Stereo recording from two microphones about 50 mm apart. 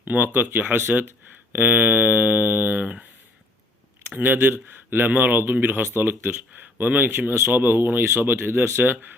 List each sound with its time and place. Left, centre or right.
0.0 s speech: right
0.8 s speech: right
1.5 s speech: right
4.1 s speech: right
6.8 s speech: right
7.1 s speech: right